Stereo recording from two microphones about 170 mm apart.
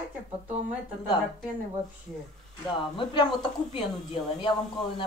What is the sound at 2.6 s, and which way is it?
Speech, 25° left (ahead or behind).